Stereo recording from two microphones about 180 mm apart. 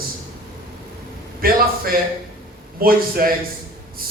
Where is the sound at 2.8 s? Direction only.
55° right (ahead or behind).